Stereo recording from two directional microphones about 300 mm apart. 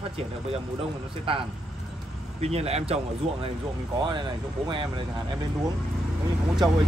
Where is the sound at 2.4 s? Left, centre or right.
Right.